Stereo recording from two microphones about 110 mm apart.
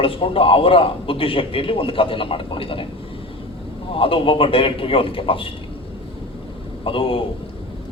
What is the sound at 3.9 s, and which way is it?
A man's voice, 55° left (ahead or behind).